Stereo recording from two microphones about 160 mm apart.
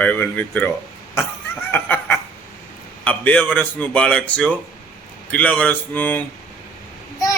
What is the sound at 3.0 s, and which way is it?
Speech, 10° left (ahead or behind).